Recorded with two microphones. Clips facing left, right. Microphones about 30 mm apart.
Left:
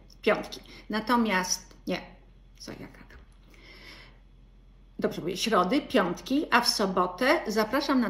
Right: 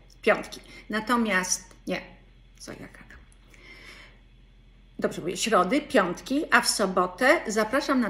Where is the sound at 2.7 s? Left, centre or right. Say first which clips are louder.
Right 1 dB; right.